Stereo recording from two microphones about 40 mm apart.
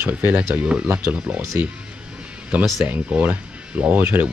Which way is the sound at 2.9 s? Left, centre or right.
Right.